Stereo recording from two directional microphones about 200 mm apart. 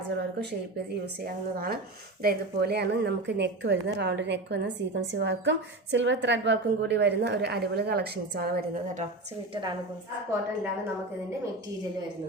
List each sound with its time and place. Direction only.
1.2 s a woman's voice: 45° right (ahead or behind)